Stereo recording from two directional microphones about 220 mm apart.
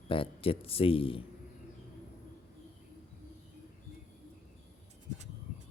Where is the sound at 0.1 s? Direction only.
25° left (ahead or behind).